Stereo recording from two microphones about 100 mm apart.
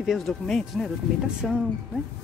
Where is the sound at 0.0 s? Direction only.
Centre (ahead or behind).